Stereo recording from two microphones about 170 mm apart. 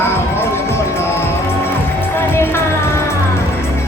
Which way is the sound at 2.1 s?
15° left (ahead or behind).